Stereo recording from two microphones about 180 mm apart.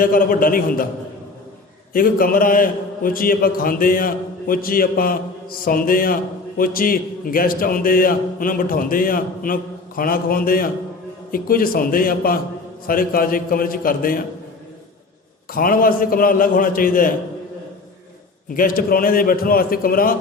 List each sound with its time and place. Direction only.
0.0 s a man's voice: 50° left (ahead or behind)
1.9 s a man's voice: 50° left (ahead or behind)
15.5 s a man's voice: 50° left (ahead or behind)
18.5 s a man's voice: 50° left (ahead or behind)